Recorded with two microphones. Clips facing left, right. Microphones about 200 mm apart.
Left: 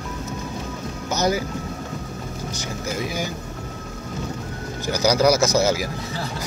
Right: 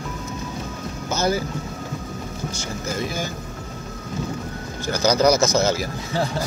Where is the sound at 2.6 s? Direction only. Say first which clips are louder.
Even; 15° left (ahead or behind).